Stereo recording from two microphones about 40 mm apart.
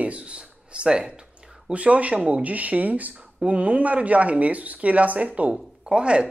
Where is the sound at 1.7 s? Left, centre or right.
Right.